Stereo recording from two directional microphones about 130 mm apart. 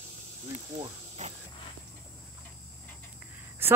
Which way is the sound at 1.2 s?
60° right (ahead or behind).